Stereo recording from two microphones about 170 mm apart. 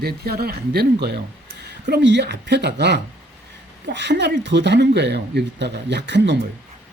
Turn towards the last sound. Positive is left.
turn(degrees=-90)